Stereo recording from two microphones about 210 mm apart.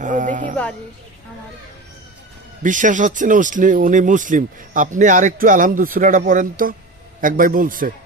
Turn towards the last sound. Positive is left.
turn(degrees=-40)  # may be behind; listen again after turning